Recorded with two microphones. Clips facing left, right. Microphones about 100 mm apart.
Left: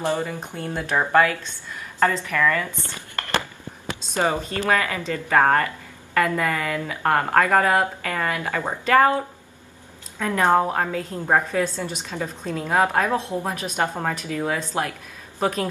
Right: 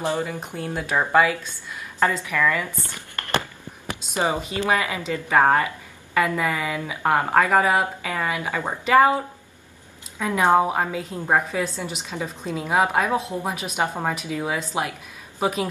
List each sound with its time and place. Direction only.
0.0 s speech: 15° right (ahead or behind)
4.1 s speech: 15° right (ahead or behind)